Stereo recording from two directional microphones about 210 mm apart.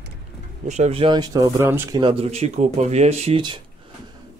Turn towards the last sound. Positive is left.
turn(degrees=-25)  # may be behind; listen again after turning